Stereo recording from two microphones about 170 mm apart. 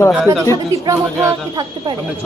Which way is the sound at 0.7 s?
20° right (ahead or behind).